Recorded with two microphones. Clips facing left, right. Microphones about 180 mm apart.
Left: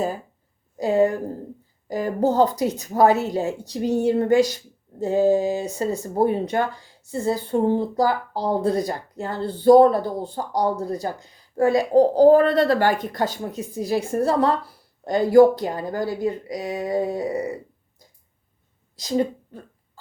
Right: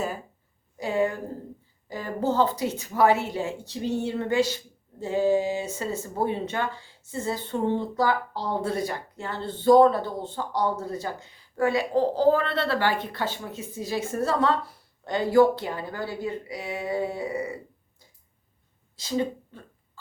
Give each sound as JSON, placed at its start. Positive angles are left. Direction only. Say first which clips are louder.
{"t": 0.8, "sound": "speech", "louder": "left 6 dB", "side_deg": 35}
{"t": 18.9, "sound": "speech", "louder": "left 5 dB", "side_deg": 40}